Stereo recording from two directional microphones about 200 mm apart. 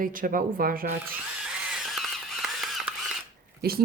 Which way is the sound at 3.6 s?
50° right (ahead or behind).